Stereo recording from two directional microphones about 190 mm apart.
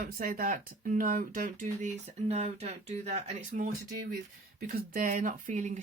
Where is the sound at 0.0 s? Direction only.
50° right (ahead or behind); by 3.7 s 35° right (ahead or behind).